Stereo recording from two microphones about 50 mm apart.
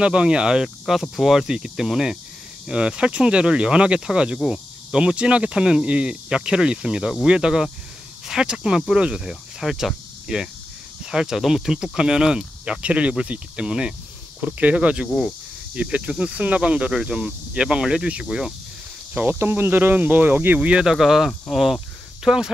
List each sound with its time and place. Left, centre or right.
0.0 s speech: right
2.6 s speech: centre
14.4 s speech: right
19.4 s speech: right
20.8 s speech: centre